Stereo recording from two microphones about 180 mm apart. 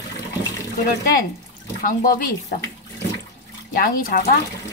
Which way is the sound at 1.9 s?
55° left (ahead or behind).